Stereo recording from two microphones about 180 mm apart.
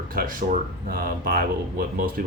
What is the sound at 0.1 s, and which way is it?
Speech, 50° right (ahead or behind).